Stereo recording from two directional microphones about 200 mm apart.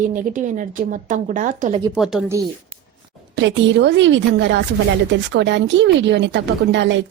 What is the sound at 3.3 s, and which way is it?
Speech, 65° right (ahead or behind).